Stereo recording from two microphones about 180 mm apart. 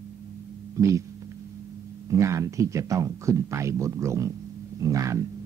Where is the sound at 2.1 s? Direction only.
15° right (ahead or behind).